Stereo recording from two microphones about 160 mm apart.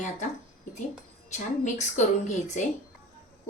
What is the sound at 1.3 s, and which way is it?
A woman's voice, 50° left (ahead or behind).